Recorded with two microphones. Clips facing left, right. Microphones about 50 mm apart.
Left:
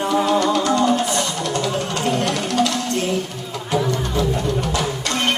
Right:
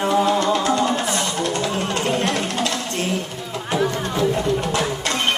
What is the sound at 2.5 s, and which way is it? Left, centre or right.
Music, right.